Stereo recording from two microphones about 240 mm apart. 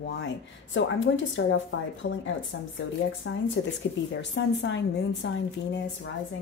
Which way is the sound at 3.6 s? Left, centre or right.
Left.